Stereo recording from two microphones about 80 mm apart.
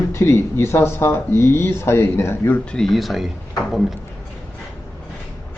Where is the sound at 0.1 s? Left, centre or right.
Left.